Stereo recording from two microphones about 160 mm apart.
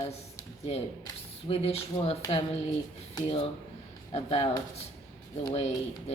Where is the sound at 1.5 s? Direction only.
40° left (ahead or behind).